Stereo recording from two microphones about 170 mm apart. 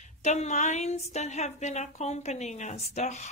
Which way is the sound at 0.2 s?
45° left (ahead or behind).